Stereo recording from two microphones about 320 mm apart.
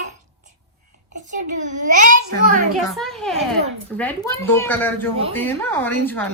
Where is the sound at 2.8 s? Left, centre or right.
Centre.